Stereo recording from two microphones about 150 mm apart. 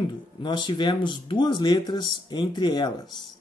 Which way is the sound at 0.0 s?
35° left (ahead or behind).